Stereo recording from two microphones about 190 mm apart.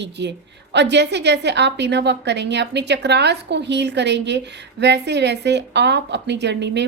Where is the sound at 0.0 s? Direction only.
65° right (ahead or behind).